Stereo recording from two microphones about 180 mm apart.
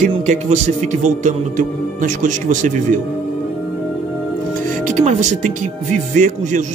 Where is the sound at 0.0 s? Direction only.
40° right (ahead or behind).